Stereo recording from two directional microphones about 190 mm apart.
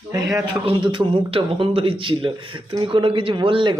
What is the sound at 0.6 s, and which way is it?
Speech, 25° right (ahead or behind).